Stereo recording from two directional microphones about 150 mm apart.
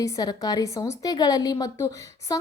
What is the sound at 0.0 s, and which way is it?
A woman's voice, 25° left (ahead or behind).